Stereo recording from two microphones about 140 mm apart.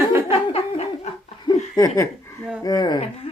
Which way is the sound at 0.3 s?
45° left (ahead or behind).